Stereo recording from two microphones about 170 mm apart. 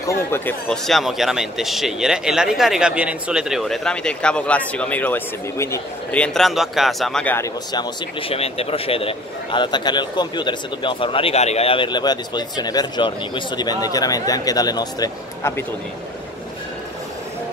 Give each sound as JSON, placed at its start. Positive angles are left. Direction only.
{"t": 0.0, "sound": "speech", "side_deg": 15}
{"t": 0.7, "sound": "speech", "side_deg": 0}
{"t": 6.2, "sound": "speech", "side_deg": 0}
{"t": 7.3, "sound": "speech", "side_deg": 20}
{"t": 8.2, "sound": "speech", "side_deg": 35}